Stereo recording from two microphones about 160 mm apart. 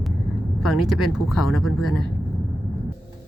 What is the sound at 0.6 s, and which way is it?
Speech, centre (ahead or behind).